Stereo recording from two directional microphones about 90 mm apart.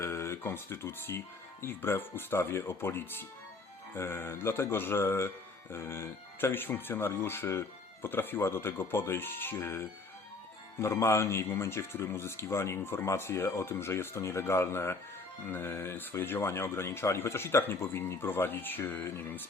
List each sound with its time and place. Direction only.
0.0 s a man's voice: 30° left (ahead or behind)